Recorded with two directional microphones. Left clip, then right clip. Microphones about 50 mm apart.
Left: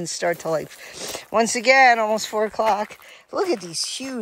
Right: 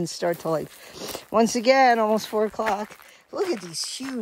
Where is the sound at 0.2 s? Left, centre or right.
Right.